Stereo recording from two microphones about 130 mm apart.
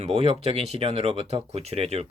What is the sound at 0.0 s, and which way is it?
Speech, 50° right (ahead or behind).